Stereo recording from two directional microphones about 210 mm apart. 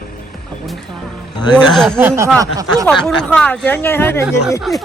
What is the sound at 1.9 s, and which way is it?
Speech, 10° right (ahead or behind).